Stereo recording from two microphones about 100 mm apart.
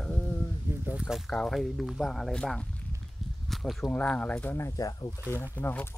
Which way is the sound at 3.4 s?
Centre (ahead or behind).